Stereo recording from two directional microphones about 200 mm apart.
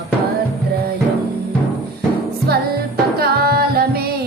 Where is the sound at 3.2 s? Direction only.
50° right (ahead or behind).